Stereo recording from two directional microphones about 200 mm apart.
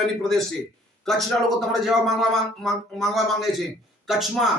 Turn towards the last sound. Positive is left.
turn(degrees=0)  # may be behind; listen again after turning